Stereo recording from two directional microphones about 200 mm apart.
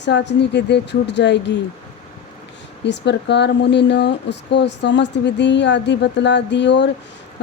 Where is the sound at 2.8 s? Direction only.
60° left (ahead or behind).